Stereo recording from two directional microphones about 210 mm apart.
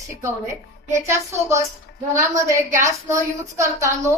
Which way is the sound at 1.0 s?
15° right (ahead or behind).